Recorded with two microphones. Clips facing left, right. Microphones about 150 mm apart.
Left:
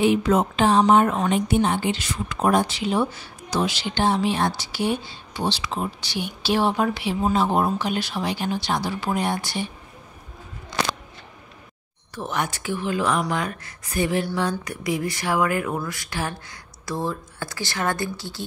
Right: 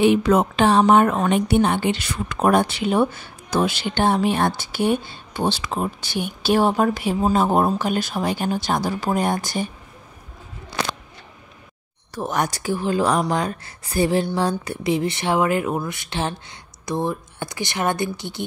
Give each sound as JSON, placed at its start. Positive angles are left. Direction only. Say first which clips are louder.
{"t": 0.0, "sound": "a woman's voice", "louder": "right 3 dB", "side_deg": -70}
{"t": 12.2, "sound": "speech", "louder": "right 4 dB", "side_deg": -40}